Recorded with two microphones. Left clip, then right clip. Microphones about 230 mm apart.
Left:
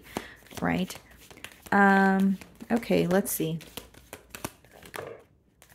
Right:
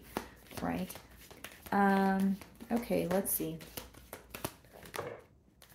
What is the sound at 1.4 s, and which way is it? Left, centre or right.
Speech, left.